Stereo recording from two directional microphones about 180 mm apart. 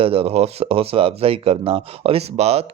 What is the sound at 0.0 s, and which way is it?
Speech, 30° right (ahead or behind).